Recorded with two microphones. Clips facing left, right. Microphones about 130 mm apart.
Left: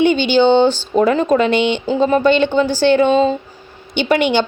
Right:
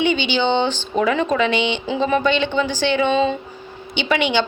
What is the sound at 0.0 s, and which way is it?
A woman's voice, 45° left (ahead or behind).